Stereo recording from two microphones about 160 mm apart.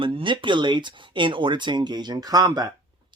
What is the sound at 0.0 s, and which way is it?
Speech, 30° right (ahead or behind).